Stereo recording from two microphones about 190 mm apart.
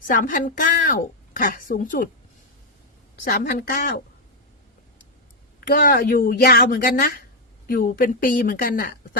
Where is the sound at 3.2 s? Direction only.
50° left (ahead or behind).